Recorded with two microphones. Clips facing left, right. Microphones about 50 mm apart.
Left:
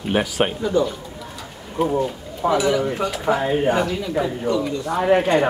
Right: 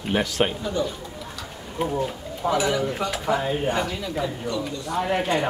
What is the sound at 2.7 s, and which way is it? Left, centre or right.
Speech, centre.